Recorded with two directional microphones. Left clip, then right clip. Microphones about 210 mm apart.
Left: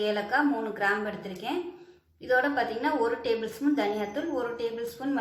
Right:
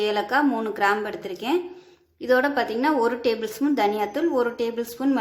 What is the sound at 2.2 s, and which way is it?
A woman's voice, 55° right (ahead or behind).